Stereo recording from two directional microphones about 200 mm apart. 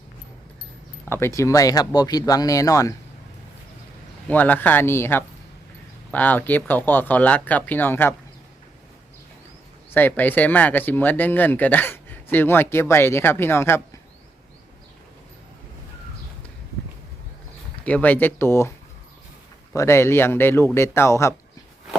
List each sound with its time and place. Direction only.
1.0 s speech: 10° left (ahead or behind)
4.3 s speech: 10° left (ahead or behind)
9.9 s speech: 10° left (ahead or behind)
17.8 s speech: 5° left (ahead or behind)
19.7 s speech: 15° left (ahead or behind)